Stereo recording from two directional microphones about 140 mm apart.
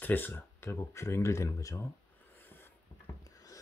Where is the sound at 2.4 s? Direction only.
15° left (ahead or behind).